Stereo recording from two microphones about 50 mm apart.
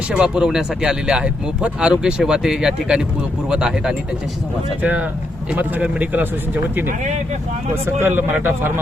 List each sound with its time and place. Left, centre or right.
0.3 s speech: centre
4.8 s speech: right
7.9 s speech: right